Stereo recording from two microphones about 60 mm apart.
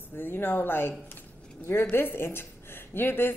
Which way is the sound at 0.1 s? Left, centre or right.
Left.